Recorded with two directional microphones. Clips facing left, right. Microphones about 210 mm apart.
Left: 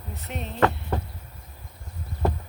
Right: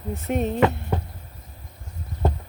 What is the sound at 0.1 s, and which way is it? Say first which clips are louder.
Speech: right 11 dB; 50° right (ahead or behind).